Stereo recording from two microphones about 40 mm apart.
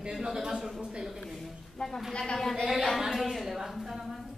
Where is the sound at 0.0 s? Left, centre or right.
Centre.